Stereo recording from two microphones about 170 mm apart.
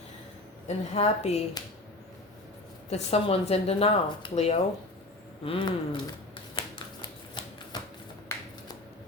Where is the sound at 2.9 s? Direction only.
35° left (ahead or behind).